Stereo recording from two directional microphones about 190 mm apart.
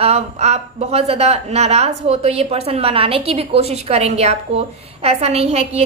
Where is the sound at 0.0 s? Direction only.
35° right (ahead or behind).